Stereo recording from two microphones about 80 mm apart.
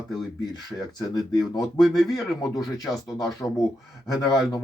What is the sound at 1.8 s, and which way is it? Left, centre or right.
Speech, centre.